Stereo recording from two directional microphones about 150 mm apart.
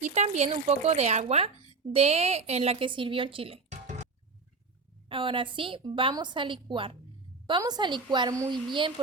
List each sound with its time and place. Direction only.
0.0 s a woman's voice: 50° right (ahead or behind)
5.0 s a woman's voice: 35° right (ahead or behind)